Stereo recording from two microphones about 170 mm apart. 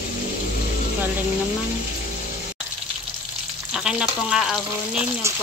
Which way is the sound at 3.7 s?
5° right (ahead or behind).